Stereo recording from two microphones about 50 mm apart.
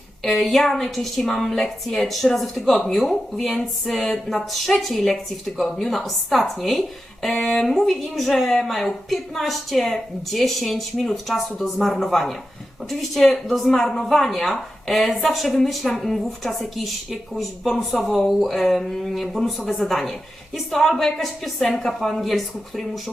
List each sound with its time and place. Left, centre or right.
0.2 s speech: centre